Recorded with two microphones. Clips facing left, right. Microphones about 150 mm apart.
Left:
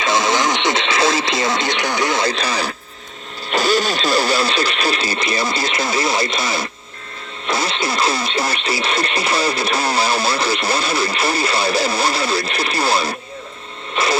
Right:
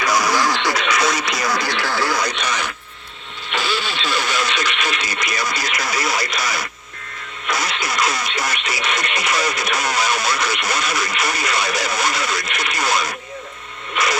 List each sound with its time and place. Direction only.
0.0 s radio: 25° left (ahead or behind)
7.4 s speech: 30° left (ahead or behind)
13.9 s a sound: 30° left (ahead or behind)